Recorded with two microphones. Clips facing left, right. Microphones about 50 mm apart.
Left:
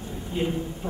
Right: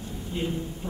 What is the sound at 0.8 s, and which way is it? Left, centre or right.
Speech, left.